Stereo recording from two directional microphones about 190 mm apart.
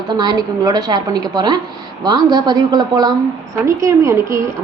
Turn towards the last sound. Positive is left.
turn(degrees=-15)  # may be behind; listen again after turning